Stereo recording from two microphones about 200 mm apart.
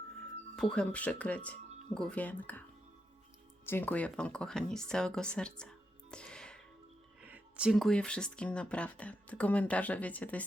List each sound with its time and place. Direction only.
0.5 s speech: 5° left (ahead or behind)
3.7 s speech: 10° left (ahead or behind)
7.2 s speech: 5° right (ahead or behind)